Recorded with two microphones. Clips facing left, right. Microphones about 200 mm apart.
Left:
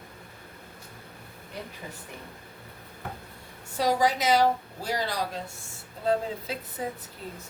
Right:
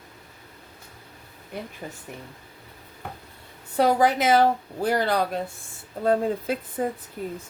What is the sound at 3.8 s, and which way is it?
A woman's voice, 55° right (ahead or behind).